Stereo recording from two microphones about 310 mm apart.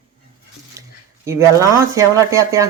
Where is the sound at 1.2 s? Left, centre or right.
Centre.